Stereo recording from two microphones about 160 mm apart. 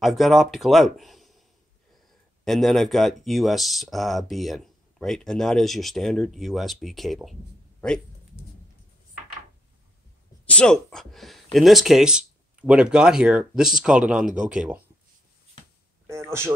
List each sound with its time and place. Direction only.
0.0 s speech: centre (ahead or behind)
2.4 s speech: centre (ahead or behind)
10.4 s speech: 5° left (ahead or behind)
16.1 s a man's voice: 15° right (ahead or behind)